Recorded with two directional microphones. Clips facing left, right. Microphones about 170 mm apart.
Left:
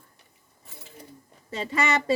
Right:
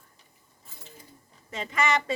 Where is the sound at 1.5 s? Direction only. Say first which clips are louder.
Left 1 dB; 30° left (ahead or behind).